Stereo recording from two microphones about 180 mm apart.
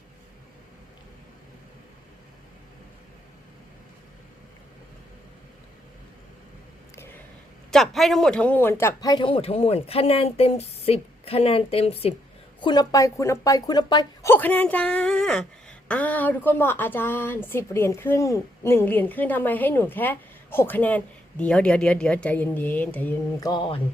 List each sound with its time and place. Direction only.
7.7 s speech: centre (ahead or behind)
23.4 s speech: 25° left (ahead or behind)